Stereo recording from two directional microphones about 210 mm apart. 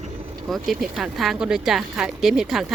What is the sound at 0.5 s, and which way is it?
Speech, centre (ahead or behind).